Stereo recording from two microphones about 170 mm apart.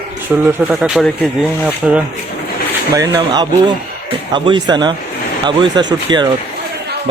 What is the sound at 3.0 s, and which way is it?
Speech, 20° right (ahead or behind).